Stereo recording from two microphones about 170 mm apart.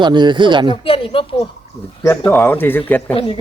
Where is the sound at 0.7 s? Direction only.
30° left (ahead or behind).